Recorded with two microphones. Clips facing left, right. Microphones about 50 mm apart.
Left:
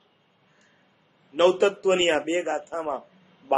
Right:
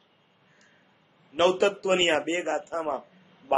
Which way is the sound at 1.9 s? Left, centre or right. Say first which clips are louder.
Left 1 dB; centre.